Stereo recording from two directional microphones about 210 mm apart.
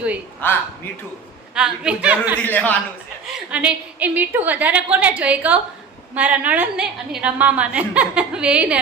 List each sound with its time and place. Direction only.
0.4 s a man's voice: 10° left (ahead or behind)
1.5 s a woman's voice: 5° right (ahead or behind)
2.4 s a man's voice: 10° left (ahead or behind)
3.5 s a woman's voice: 5° right (ahead or behind)